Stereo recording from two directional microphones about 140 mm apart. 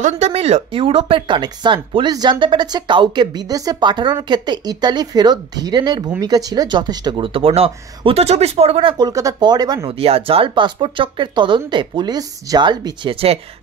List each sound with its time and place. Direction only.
0.0 s speech: 50° right (ahead or behind); by 9.8 s 30° right (ahead or behind)
9.8 s speech: 45° right (ahead or behind)